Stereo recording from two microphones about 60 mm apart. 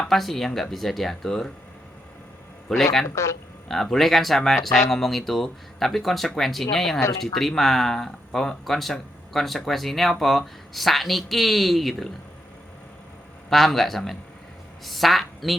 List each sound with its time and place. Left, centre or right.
0.1 s speech: centre
2.7 s speech: centre
3.2 s speech: left
3.7 s speech: centre
13.5 s a woman's voice: centre